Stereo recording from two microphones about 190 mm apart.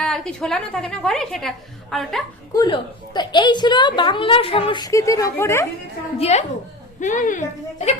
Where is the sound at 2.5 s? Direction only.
25° left (ahead or behind).